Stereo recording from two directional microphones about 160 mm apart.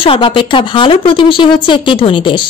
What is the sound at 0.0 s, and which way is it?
A woman's voice, 35° left (ahead or behind).